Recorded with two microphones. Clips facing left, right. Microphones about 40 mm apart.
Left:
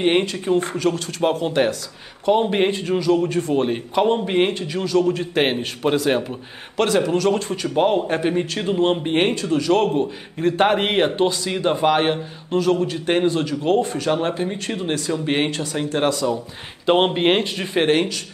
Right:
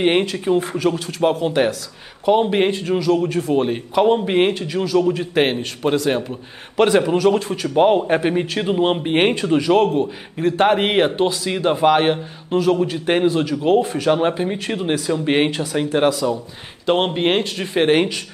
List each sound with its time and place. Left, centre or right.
0.0 s a man's voice: centre
6.8 s speech: centre
7.8 s speech: centre
9.3 s a man's voice: right
9.7 s a man's voice: centre
16.8 s speech: centre
17.8 s speech: centre